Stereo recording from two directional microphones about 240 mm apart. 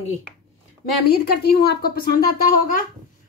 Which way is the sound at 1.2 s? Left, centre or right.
Left.